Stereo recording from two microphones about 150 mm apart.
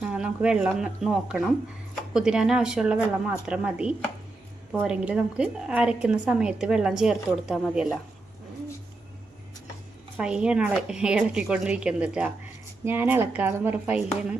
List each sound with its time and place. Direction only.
0.0 s a woman's voice: 5° right (ahead or behind)
10.2 s a woman's voice: 5° right (ahead or behind)